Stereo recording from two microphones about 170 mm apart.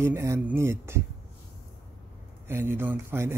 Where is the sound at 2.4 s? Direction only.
15° right (ahead or behind).